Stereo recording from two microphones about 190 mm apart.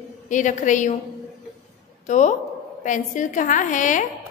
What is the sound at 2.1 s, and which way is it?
A woman's voice, 40° left (ahead or behind).